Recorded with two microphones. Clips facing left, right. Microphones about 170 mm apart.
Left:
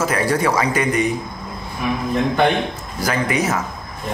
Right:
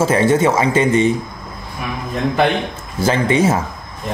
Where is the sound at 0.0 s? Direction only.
25° right (ahead or behind).